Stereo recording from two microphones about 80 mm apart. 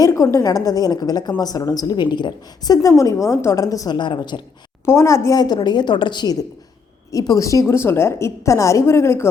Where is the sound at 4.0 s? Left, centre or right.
Left.